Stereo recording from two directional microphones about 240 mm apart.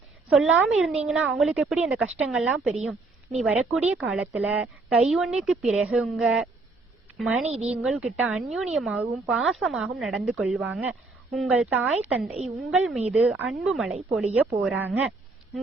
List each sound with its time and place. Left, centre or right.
0.3 s a woman's voice: centre
7.4 s a woman's voice: right
7.7 s a woman's voice: centre